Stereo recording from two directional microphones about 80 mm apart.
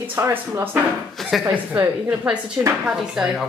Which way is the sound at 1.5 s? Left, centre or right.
Right.